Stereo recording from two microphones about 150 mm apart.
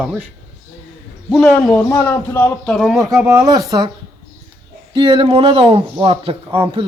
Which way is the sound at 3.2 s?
25° right (ahead or behind).